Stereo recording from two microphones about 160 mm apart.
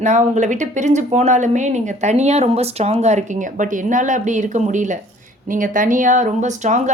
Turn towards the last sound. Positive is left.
turn(degrees=-50)  # may be behind; listen again after turning